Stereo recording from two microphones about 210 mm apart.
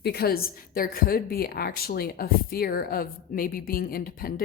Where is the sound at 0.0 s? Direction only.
50° left (ahead or behind).